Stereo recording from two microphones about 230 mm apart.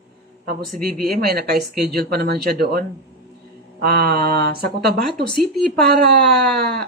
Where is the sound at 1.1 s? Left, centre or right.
Right.